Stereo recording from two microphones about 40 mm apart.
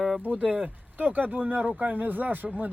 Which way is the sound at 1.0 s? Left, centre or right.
Right.